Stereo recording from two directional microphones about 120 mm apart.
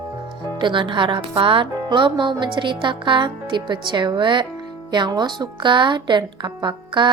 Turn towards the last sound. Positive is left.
turn(degrees=-40)  # may be behind; listen again after turning